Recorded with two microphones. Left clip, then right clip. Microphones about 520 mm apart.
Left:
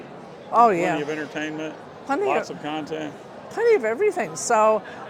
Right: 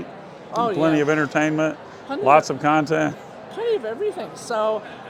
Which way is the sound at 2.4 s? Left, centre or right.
Right.